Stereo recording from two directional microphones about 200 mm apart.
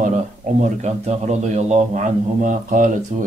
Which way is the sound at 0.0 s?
35° right (ahead or behind).